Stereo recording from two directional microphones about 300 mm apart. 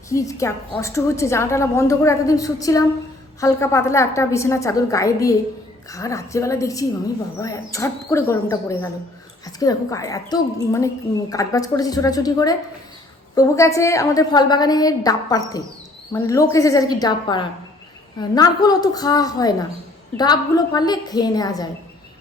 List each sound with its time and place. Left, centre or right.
0.1 s a woman's voice: centre